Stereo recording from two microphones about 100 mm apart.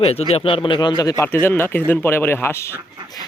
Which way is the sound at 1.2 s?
25° left (ahead or behind).